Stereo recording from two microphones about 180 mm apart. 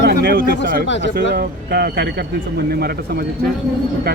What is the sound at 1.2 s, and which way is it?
A man's voice, 60° right (ahead or behind).